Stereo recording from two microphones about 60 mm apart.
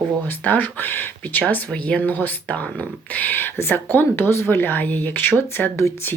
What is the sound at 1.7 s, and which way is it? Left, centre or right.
Speech, left.